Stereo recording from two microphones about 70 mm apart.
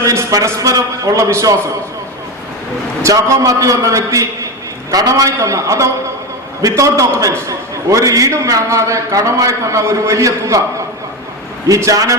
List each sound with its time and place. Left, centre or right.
0.0 s a sound: right
0.4 s a man's voice: right
3.0 s a man's voice: right
11.7 s a man's voice: right